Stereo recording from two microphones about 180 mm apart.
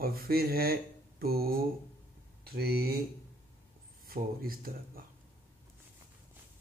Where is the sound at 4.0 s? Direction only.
55° right (ahead or behind).